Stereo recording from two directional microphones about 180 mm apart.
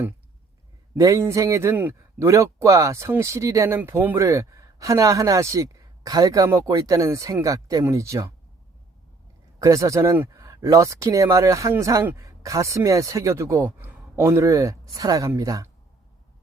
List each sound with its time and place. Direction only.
0.9 s a man's voice: 15° right (ahead or behind)
9.6 s a man's voice: 15° right (ahead or behind)